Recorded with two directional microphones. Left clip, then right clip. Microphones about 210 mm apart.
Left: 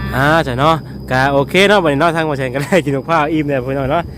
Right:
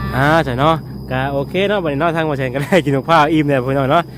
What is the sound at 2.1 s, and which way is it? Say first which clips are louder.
Speech: left 2 dB; centre (ahead or behind).